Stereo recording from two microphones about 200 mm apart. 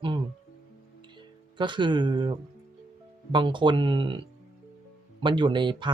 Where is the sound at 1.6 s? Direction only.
25° right (ahead or behind).